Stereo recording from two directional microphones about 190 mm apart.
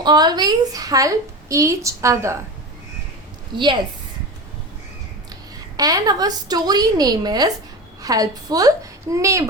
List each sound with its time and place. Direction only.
0.0 s a woman's voice: 20° right (ahead or behind)
3.5 s a woman's voice: 25° right (ahead or behind)
5.7 s a woman's voice: 20° right (ahead or behind)